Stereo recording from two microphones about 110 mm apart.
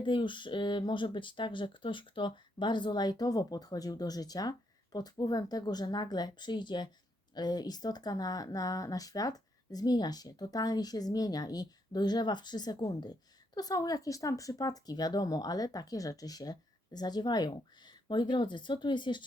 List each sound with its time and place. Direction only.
0.0 s speech: 45° left (ahead or behind)